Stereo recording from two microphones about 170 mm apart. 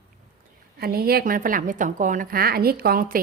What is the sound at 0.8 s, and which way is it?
A woman's voice, 60° right (ahead or behind).